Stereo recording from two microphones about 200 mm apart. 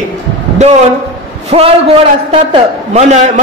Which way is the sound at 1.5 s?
35° right (ahead or behind).